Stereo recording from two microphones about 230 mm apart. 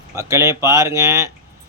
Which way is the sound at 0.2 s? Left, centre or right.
Centre.